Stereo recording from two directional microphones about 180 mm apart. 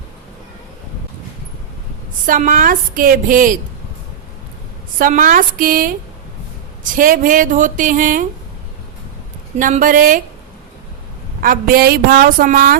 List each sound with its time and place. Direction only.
2.2 s a woman's voice: 50° right (ahead or behind)
4.9 s a woman's voice: 50° right (ahead or behind)
6.9 s a woman's voice: 50° right (ahead or behind)
9.6 s a woman's voice: 50° right (ahead or behind)
11.3 s a woman's voice: 50° right (ahead or behind)